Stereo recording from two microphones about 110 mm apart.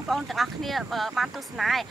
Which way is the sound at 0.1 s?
Centre (ahead or behind).